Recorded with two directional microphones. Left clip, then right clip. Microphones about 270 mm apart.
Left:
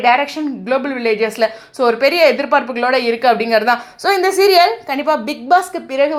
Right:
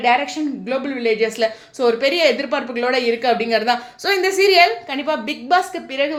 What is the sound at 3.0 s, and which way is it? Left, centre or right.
A woman's voice, centre.